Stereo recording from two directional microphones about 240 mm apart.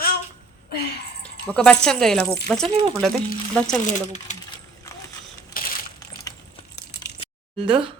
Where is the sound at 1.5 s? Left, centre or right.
Centre.